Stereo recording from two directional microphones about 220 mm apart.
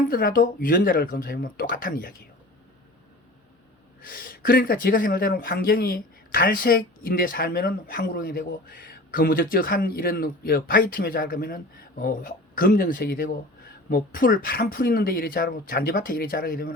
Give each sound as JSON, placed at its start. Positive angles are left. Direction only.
{"t": 0.1, "sound": "speech", "side_deg": 40}
{"t": 4.0, "sound": "speech", "side_deg": 40}